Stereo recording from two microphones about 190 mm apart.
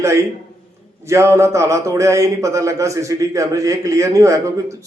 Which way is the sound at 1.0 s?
15° right (ahead or behind).